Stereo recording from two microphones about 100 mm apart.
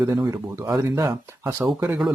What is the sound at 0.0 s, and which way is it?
Speech, 35° right (ahead or behind).